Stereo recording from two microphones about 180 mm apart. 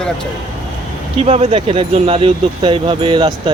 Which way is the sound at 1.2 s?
35° right (ahead or behind).